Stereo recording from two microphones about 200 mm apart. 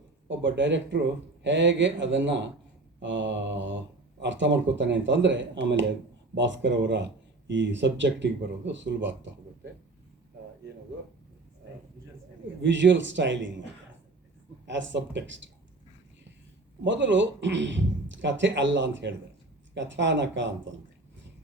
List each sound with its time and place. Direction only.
0.3 s speech: 65° right (ahead or behind)
12.6 s speech: 65° right (ahead or behind)
14.7 s speech: 65° right (ahead or behind)
16.8 s speech: 65° right (ahead or behind)